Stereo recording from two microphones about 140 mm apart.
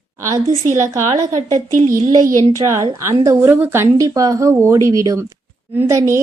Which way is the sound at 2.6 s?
25° right (ahead or behind).